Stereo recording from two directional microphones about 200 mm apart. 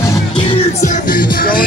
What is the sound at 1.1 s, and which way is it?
Music, 45° left (ahead or behind).